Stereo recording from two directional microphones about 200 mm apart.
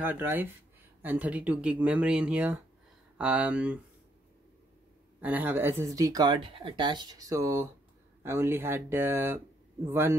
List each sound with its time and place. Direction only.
0.0 s speech: 10° right (ahead or behind)
5.2 s speech: 10° right (ahead or behind)